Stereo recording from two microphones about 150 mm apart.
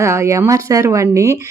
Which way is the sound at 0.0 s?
20° right (ahead or behind).